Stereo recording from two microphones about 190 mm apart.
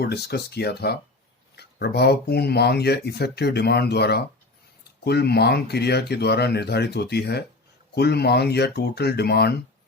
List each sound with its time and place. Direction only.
0.0 s speech: 60° left (ahead or behind)